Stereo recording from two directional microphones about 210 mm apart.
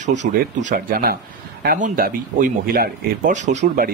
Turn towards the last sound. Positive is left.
turn(degrees=-35)  # may be behind; listen again after turning